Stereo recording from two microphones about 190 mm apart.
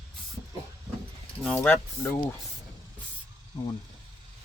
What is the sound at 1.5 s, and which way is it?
Speech, 10° left (ahead or behind).